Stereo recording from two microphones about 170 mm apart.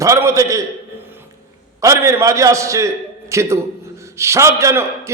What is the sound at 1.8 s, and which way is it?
A man's voice, 15° right (ahead or behind).